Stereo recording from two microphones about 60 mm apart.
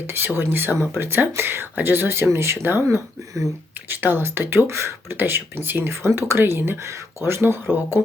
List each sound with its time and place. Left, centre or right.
0.3 s speech: right